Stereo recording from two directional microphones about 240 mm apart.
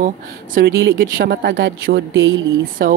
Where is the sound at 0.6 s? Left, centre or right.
Right.